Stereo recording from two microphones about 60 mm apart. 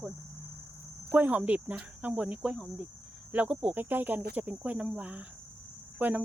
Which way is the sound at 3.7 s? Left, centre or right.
Right.